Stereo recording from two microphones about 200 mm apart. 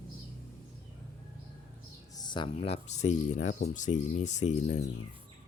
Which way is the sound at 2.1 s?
20° left (ahead or behind).